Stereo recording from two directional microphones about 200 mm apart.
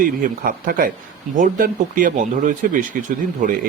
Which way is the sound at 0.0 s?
45° right (ahead or behind).